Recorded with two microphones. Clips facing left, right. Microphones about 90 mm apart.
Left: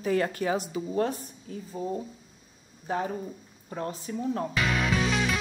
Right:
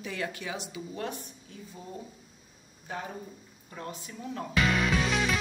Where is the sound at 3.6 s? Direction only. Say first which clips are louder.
Left 7 dB; 35° left (ahead or behind).